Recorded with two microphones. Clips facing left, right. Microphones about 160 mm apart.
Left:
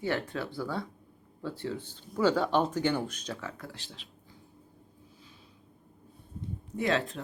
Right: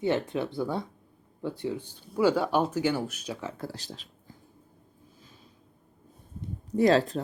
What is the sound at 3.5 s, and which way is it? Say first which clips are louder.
Speech: right 5 dB; 30° right (ahead or behind).